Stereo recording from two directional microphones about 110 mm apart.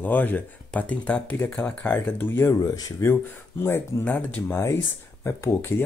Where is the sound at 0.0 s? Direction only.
15° left (ahead or behind).